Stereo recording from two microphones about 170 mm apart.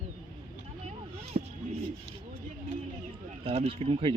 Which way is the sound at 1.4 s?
40° right (ahead or behind).